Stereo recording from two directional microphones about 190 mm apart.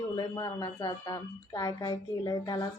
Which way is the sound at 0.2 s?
20° left (ahead or behind).